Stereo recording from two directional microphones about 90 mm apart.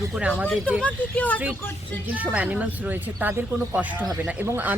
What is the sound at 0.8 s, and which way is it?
Speech, 15° left (ahead or behind).